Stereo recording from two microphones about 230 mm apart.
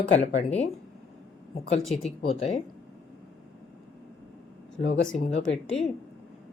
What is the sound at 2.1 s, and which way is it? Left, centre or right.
Speech, left.